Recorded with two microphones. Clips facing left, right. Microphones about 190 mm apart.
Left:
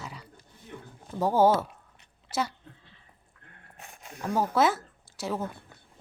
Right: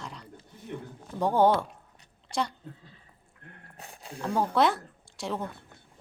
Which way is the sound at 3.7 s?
35° right (ahead or behind).